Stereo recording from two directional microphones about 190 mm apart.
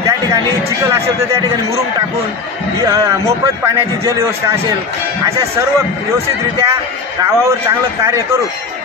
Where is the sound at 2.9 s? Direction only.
15° right (ahead or behind).